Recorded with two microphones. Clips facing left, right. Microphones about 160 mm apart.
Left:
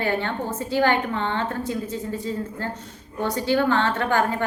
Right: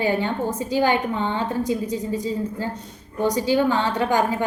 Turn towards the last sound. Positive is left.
turn(degrees=-15)  # may be behind; listen again after turning